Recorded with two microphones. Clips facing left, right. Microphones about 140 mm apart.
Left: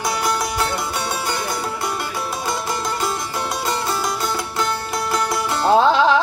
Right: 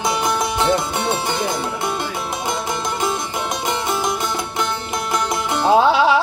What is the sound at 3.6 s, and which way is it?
Music, 20° right (ahead or behind).